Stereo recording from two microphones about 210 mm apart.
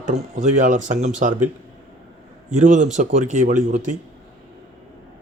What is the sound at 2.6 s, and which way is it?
Speech, 35° right (ahead or behind).